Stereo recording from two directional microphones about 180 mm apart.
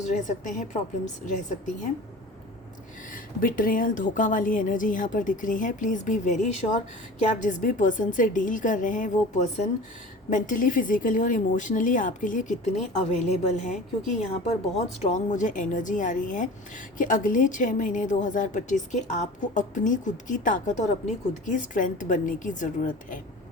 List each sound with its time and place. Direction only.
0.0 s a woman's voice: 40° left (ahead or behind)
3.4 s a woman's voice: 50° left (ahead or behind)